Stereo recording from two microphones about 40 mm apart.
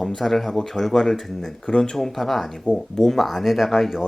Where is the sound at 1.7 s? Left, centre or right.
Left.